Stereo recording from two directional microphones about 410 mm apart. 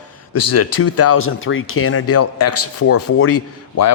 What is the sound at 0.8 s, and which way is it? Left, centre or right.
A man's voice, left.